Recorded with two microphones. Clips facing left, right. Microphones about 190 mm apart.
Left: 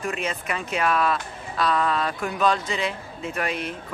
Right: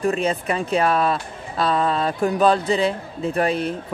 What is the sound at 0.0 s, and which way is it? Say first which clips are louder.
Speech: right 8 dB; 35° right (ahead or behind).